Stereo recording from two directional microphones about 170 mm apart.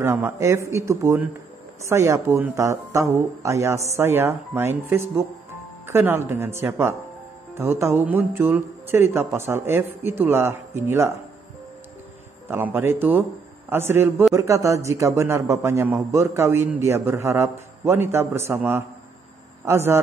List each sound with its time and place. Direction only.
0.0 s a man's voice: 15° right (ahead or behind)
12.4 s a man's voice: 15° right (ahead or behind)